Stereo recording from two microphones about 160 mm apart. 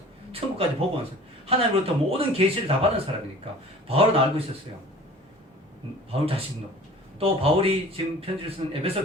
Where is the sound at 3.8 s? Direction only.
40° right (ahead or behind).